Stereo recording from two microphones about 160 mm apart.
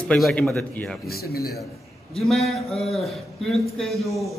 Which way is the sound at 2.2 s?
Centre (ahead or behind).